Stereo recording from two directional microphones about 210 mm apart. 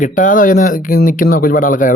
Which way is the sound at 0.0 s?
40° left (ahead or behind).